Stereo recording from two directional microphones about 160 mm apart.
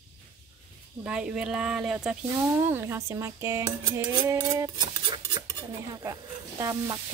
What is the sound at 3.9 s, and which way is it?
Cutlery, 20° right (ahead or behind).